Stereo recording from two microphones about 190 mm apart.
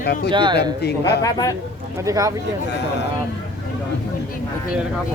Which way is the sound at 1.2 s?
15° left (ahead or behind).